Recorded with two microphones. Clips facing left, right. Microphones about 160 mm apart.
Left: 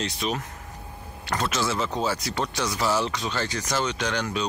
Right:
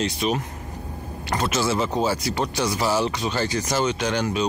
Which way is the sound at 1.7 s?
20° right (ahead or behind).